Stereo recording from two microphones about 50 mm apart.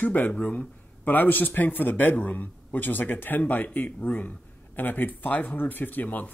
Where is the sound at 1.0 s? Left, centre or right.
Left.